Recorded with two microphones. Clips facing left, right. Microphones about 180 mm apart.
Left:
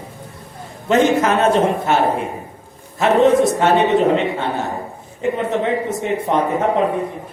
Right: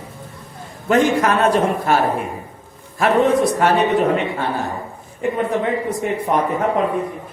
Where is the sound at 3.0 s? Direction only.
25° left (ahead or behind).